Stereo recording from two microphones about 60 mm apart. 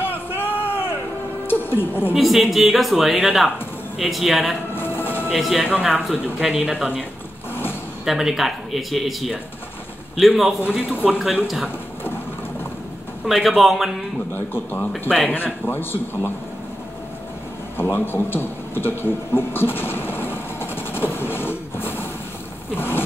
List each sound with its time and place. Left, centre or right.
0.0 s a sound: left
1.5 s speech: left
2.1 s speech: centre
4.7 s a sound: left
5.3 s speech: centre
8.0 s speech: centre
13.3 s speech: centre
14.3 s speech: left
15.0 s speech: centre
15.3 s speech: left
17.7 s a sound: left
22.8 s zipper: left